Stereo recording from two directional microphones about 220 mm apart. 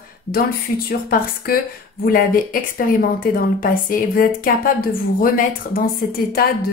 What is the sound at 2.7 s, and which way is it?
A woman's voice, 40° left (ahead or behind).